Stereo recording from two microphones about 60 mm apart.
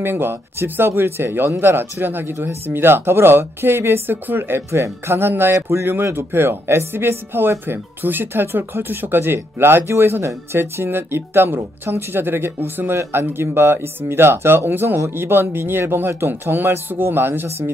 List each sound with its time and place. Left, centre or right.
0.0 s speech: right